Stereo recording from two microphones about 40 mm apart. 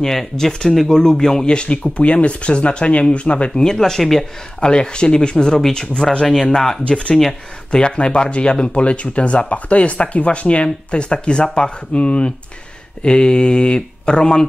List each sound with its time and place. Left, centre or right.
0.0 s speech: centre
1.4 s speech: left; by 4.3 s centre
4.6 s speech: left
6.9 s speech: left